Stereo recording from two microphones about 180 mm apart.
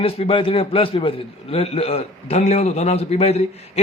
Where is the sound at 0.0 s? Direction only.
30° left (ahead or behind).